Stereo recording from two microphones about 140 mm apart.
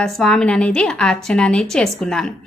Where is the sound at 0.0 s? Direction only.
5° left (ahead or behind).